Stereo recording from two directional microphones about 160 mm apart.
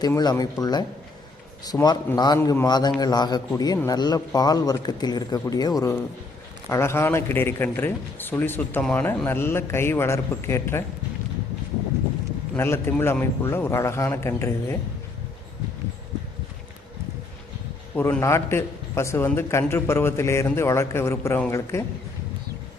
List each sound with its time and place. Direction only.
0.0 s a man's voice: 25° left (ahead or behind)
12.5 s speech: 15° left (ahead or behind)
17.9 s speech: 15° left (ahead or behind)